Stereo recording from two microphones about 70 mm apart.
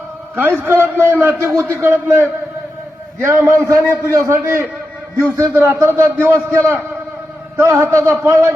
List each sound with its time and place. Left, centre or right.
0.3 s a man's voice: right